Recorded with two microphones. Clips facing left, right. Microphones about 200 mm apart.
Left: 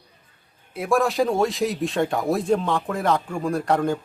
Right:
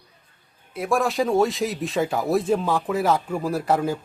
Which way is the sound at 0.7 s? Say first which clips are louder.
Left 2 dB; centre (ahead or behind).